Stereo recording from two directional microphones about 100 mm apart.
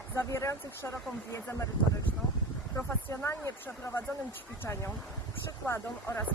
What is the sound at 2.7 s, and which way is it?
Speech, 30° left (ahead or behind).